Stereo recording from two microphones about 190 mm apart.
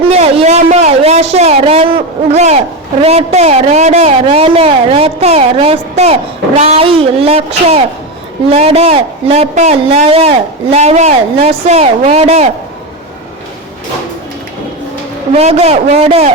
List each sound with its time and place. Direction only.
0.1 s speech: 35° right (ahead or behind)
15.4 s speech: 35° right (ahead or behind)